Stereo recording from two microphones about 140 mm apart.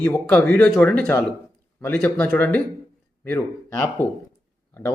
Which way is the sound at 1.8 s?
10° left (ahead or behind).